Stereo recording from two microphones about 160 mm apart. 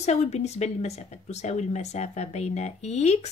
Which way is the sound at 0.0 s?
45° left (ahead or behind).